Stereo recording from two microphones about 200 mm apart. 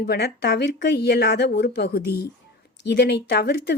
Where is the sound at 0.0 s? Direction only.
55° left (ahead or behind).